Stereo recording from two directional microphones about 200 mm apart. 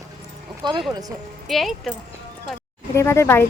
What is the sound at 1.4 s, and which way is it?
Speech, centre (ahead or behind).